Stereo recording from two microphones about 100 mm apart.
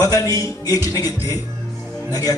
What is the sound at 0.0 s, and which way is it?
A man's voice, 35° left (ahead or behind).